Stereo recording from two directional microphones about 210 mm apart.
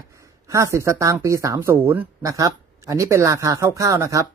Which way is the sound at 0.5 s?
15° right (ahead or behind).